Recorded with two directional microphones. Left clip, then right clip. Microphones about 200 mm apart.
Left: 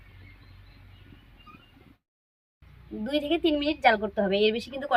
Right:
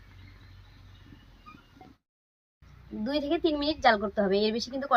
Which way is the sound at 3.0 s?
20° left (ahead or behind).